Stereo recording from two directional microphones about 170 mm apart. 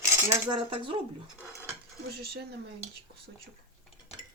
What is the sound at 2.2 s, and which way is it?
Speech, 70° right (ahead or behind).